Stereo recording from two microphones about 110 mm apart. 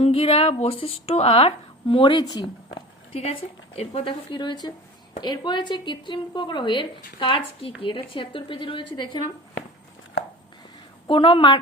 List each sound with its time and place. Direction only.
0.0 s speech: 60° left (ahead or behind); by 3.2 s 45° left (ahead or behind)
3.8 s speech: 65° left (ahead or behind)
4.3 s a woman's voice: 45° left (ahead or behind)
11.1 s a woman's voice: 50° left (ahead or behind)